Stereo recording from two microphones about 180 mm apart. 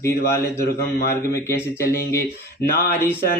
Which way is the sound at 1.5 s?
15° left (ahead or behind).